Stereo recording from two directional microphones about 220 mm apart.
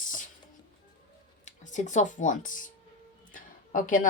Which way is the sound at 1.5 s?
35° left (ahead or behind).